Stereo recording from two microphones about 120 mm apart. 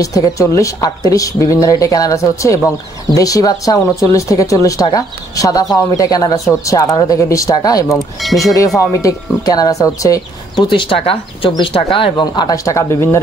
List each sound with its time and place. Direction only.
0.0 s speech: 30° left (ahead or behind)
7.9 s speech: centre (ahead or behind)
8.5 s speech: 30° left (ahead or behind)
10.7 s speech: 45° left (ahead or behind)
12.6 s speech: 25° left (ahead or behind)